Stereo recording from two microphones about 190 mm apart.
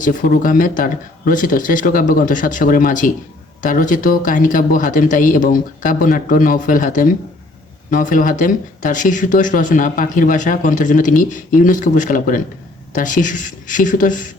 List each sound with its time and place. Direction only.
0.0 s speech: 45° left (ahead or behind)